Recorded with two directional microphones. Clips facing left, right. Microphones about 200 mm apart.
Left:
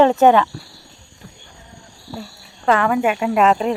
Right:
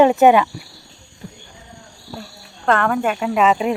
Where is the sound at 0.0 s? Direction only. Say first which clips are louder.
Right 1 dB; 10° right (ahead or behind).